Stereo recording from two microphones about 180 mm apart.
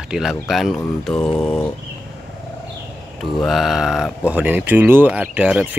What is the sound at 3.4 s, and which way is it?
Speech, centre (ahead or behind).